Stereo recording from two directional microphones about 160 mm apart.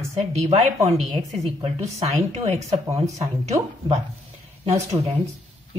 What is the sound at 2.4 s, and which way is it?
Speech, 45° right (ahead or behind).